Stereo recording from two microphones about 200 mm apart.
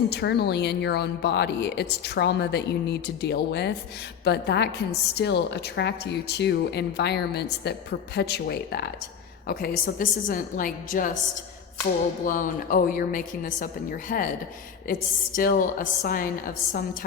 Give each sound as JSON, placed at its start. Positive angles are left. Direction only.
{"t": 0.1, "sound": "a woman's voice", "side_deg": 55}
{"t": 12.2, "sound": "a woman's voice", "side_deg": 45}
{"t": 15.4, "sound": "a woman's voice", "side_deg": 45}